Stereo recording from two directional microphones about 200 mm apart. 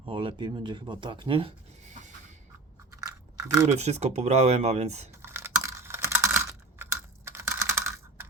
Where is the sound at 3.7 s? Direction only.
35° right (ahead or behind).